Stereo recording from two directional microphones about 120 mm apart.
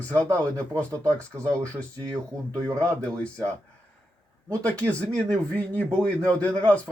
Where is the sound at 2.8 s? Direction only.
10° left (ahead or behind).